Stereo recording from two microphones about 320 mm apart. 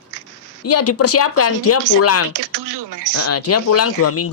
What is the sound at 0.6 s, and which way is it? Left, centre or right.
Speech, left.